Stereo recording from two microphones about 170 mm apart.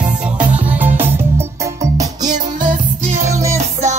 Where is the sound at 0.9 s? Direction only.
15° right (ahead or behind).